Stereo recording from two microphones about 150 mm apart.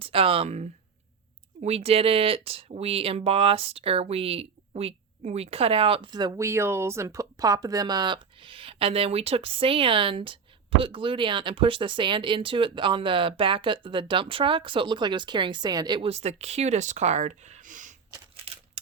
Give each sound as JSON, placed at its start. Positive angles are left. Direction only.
{"t": 0.0, "sound": "speech", "side_deg": -40}
{"t": 16.0, "sound": "speech", "side_deg": -45}